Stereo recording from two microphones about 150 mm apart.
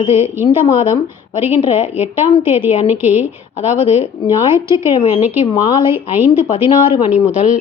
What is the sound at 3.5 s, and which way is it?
Speech, 50° left (ahead or behind).